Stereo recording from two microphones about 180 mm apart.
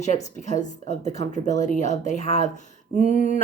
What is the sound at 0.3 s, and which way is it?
A woman's voice, 40° left (ahead or behind).